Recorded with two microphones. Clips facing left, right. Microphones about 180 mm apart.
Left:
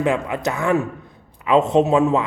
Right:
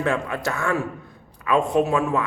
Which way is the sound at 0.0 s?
15° left (ahead or behind).